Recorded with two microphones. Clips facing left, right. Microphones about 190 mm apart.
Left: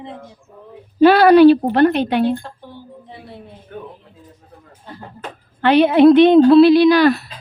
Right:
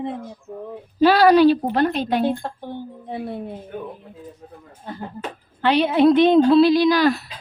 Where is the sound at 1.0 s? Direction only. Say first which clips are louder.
Left 5 dB; 60° left (ahead or behind).